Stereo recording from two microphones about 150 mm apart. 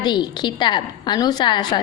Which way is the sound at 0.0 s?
30° left (ahead or behind).